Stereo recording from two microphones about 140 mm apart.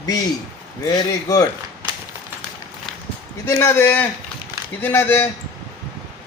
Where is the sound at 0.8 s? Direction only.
25° left (ahead or behind).